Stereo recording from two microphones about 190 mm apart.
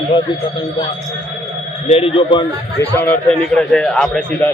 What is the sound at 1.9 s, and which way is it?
Speech, 30° left (ahead or behind).